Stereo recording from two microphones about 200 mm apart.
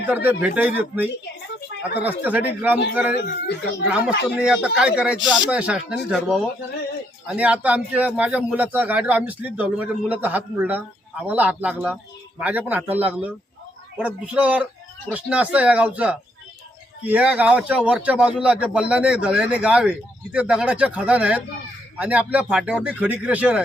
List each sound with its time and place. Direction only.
0.0 s a man's voice: 10° right (ahead or behind)
3.2 s speech: 55° left (ahead or behind)
4.4 s a man's voice: 5° right (ahead or behind)